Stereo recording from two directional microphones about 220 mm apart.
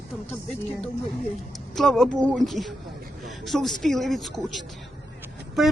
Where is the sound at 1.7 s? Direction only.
Centre (ahead or behind).